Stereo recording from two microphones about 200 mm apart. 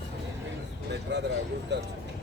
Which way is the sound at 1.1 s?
60° right (ahead or behind).